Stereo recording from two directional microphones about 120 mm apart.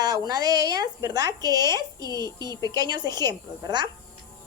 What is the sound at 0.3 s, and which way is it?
A woman's voice, 35° right (ahead or behind).